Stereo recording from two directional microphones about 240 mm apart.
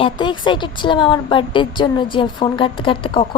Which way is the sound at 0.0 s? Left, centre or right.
Centre.